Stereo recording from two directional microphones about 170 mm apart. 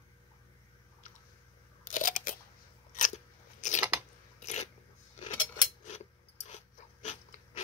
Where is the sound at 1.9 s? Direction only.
50° left (ahead or behind).